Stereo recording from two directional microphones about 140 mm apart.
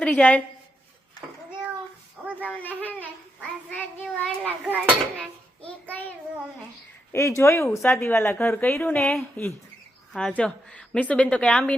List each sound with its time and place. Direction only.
0.0 s a woman's voice: 10° left (ahead or behind)
2.2 s a sound: 10° right (ahead or behind)
2.5 s speech: 10° left (ahead or behind)
4.6 s speech: 5° right (ahead or behind)
5.6 s child singing: 10° left (ahead or behind)
7.1 s speech: 20° left (ahead or behind)